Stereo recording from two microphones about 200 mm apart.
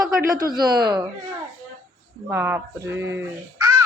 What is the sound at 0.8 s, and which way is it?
Speech, 25° right (ahead or behind).